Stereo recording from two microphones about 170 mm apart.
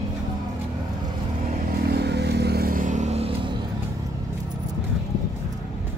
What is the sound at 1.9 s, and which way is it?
Vehicle, 75° right (ahead or behind).